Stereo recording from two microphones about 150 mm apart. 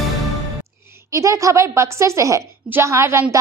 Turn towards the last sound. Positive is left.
turn(degrees=-15)  # may be behind; listen again after turning